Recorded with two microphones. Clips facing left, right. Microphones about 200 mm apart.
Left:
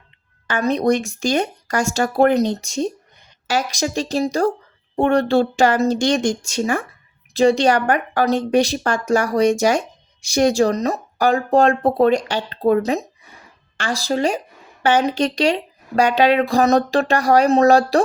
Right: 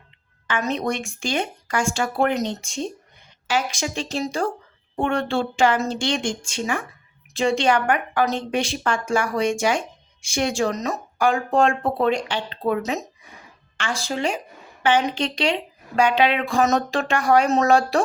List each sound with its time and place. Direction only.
0.4 s a woman's voice: 35° left (ahead or behind)